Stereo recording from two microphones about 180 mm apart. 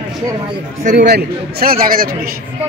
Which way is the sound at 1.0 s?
60° right (ahead or behind).